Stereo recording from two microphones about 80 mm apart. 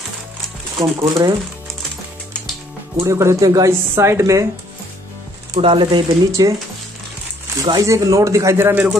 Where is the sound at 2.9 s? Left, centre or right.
Right.